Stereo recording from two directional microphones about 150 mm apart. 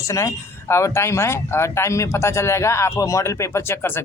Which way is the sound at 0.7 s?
20° left (ahead or behind).